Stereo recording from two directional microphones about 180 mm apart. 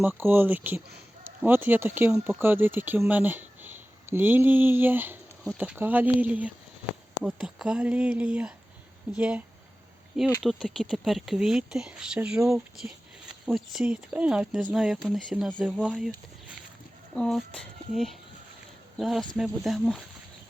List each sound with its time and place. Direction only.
0.0 s speech: 10° right (ahead or behind)
10.4 s speech: centre (ahead or behind)